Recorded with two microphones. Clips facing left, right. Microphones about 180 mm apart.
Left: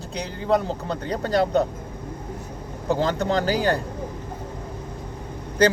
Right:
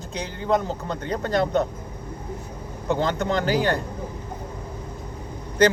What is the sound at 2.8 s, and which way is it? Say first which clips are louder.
Speech: left 1 dB; 35° left (ahead or behind).